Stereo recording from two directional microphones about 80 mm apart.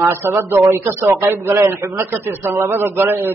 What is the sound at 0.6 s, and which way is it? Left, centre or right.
A man's voice, right.